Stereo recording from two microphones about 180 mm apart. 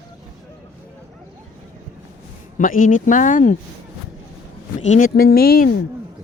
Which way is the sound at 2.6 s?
50° left (ahead or behind).